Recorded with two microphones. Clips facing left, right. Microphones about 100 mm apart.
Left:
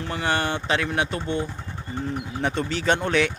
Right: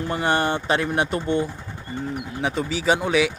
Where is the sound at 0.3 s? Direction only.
40° right (ahead or behind).